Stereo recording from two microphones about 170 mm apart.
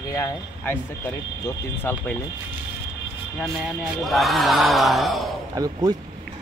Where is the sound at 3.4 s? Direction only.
Centre (ahead or behind).